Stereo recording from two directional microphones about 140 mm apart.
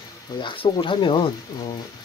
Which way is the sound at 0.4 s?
35° left (ahead or behind).